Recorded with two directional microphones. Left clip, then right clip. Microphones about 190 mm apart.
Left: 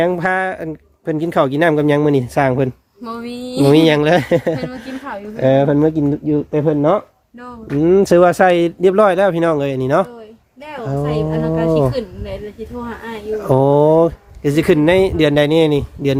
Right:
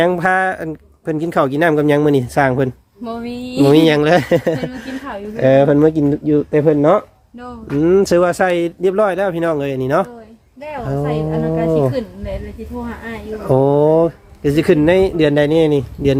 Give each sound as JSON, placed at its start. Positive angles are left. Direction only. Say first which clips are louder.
{"t": 0.0, "sound": "speech", "louder": "right 2 dB", "side_deg": 5}
{"t": 1.1, "sound": "speech", "louder": "even", "side_deg": 15}
{"t": 3.0, "sound": "speech", "louder": "right 1 dB", "side_deg": 20}
{"t": 7.8, "sound": "speech", "louder": "left 2 dB", "side_deg": 25}
{"t": 11.3, "sound": "speech", "louder": "even", "side_deg": 30}
{"t": 11.6, "sound": "insect", "louder": "left 1 dB", "side_deg": 20}
{"t": 13.3, "sound": "speech", "louder": "left 1 dB", "side_deg": 15}